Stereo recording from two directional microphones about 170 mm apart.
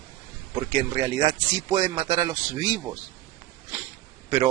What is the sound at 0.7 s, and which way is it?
Speech, 30° right (ahead or behind).